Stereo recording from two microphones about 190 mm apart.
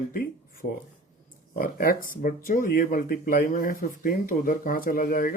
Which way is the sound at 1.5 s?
50° left (ahead or behind).